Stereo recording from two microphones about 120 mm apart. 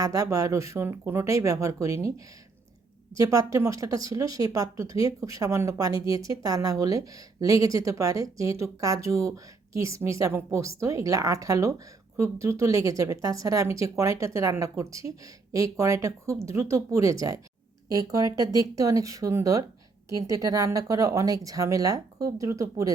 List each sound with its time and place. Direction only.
0.0 s speech: 30° right (ahead or behind)